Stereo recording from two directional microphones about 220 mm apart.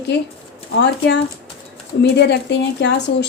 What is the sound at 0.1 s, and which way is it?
A woman's voice, 50° left (ahead or behind).